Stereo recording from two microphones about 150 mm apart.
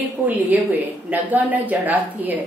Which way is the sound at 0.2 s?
10° right (ahead or behind).